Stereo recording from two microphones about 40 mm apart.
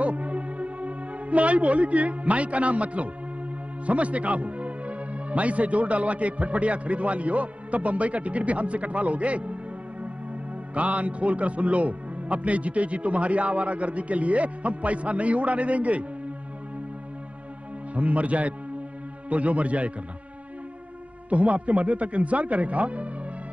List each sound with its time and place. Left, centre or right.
0.0 s music: right
3.8 s a man's voice: right
10.7 s a man's voice: right
17.9 s a man's voice: right
21.3 s a man's voice: right